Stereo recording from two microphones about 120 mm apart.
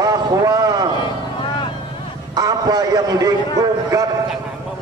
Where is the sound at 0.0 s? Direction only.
30° right (ahead or behind).